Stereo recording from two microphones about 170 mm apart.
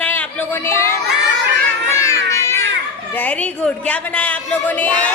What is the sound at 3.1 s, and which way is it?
A woman's voice, 10° left (ahead or behind).